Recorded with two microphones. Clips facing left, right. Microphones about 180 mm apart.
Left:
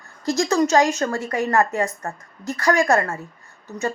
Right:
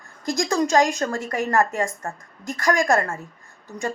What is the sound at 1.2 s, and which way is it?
A woman's voice, 15° left (ahead or behind).